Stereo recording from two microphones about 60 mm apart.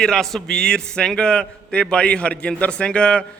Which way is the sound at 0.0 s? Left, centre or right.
Centre.